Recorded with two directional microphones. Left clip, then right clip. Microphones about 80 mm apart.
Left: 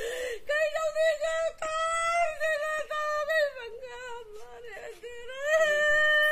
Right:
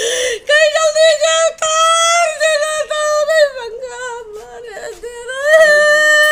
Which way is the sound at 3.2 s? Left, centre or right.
Right.